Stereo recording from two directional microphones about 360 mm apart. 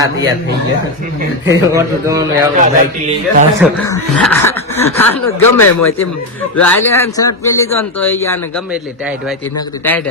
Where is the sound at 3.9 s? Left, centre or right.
Centre.